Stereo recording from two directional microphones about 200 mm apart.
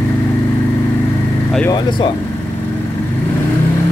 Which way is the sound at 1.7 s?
25° left (ahead or behind).